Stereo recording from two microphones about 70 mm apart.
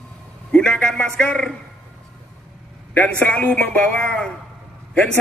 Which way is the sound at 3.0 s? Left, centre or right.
Centre.